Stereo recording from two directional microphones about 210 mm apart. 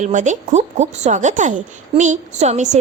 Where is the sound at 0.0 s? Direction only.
35° right (ahead or behind).